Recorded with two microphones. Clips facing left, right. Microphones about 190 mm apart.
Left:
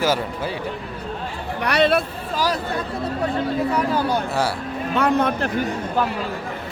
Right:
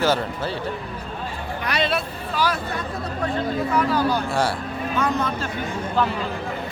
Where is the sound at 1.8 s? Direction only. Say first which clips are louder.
Left 8 dB; 55° left (ahead or behind).